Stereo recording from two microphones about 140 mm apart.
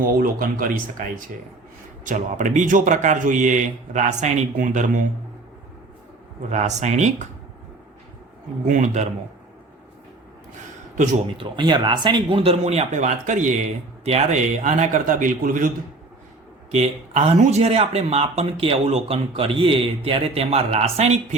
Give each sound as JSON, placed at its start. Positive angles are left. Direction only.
{"t": 0.2, "sound": "speech", "side_deg": -85}
{"t": 2.0, "sound": "speech", "side_deg": -65}
{"t": 6.5, "sound": "speech", "side_deg": -55}
{"t": 8.6, "sound": "speech", "side_deg": -60}
{"t": 10.9, "sound": "a man's voice", "side_deg": -60}
{"t": 11.3, "sound": "speech", "side_deg": -35}
{"t": 16.7, "sound": "speech", "side_deg": -50}